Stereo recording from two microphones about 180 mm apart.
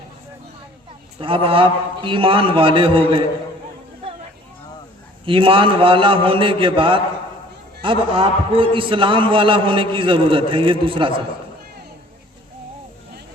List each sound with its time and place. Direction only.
1.2 s a man's voice: 30° right (ahead or behind)
5.2 s a man's voice: 30° right (ahead or behind)